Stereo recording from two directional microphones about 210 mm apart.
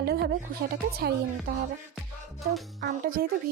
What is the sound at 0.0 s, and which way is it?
Music, 50° right (ahead or behind).